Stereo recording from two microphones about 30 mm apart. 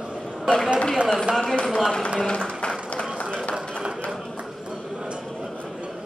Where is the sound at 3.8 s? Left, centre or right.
Right.